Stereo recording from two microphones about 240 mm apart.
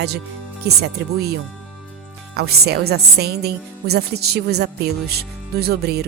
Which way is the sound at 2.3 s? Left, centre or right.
Right.